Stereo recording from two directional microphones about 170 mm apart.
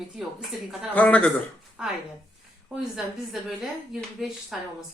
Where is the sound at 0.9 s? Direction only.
10° left (ahead or behind).